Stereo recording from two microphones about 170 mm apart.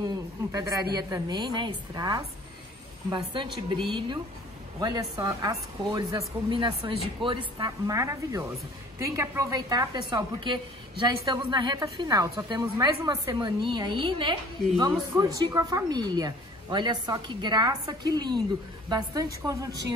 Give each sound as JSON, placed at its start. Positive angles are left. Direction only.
{"t": 0.0, "sound": "a woman's voice", "side_deg": -20}
{"t": 3.3, "sound": "a woman's voice", "side_deg": -30}